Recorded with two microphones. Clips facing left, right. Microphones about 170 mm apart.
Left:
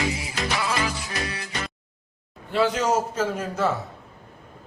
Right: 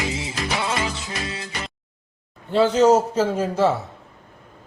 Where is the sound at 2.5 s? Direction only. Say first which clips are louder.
Right 6 dB; 30° right (ahead or behind).